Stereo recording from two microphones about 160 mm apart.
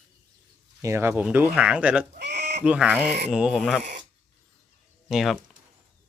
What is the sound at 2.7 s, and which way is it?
Speech, 10° right (ahead or behind).